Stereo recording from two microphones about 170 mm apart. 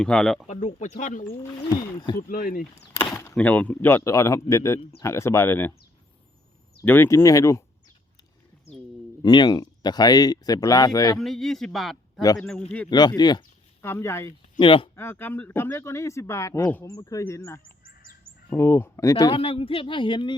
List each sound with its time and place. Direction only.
0.0 s a man's voice: 5° left (ahead or behind)
0.4 s speech: 45° left (ahead or behind)
1.5 s speech: 25° left (ahead or behind)
2.2 s speech: 55° left (ahead or behind)
3.0 s speech: 15° left (ahead or behind)
6.8 s speech: 15° left (ahead or behind)
9.2 s speech: 25° left (ahead or behind)
11.2 s a man's voice: centre (ahead or behind)
12.2 s speech: 20° left (ahead or behind)
13.8 s speech: 15° left (ahead or behind)
14.6 s a man's voice: 30° left (ahead or behind)
14.9 s speech: 15° left (ahead or behind)
19.2 s a man's voice: 35° left (ahead or behind)